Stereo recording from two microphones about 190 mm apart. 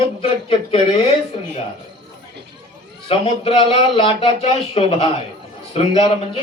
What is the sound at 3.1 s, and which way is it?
Speech, 30° left (ahead or behind).